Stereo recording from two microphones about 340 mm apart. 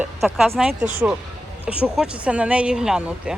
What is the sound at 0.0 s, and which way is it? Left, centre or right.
Speech, centre.